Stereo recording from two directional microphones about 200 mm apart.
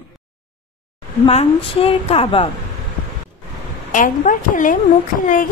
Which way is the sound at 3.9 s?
40° left (ahead or behind).